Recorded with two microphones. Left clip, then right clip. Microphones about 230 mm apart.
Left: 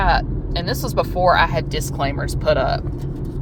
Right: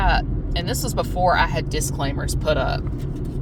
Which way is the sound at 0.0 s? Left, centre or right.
Left.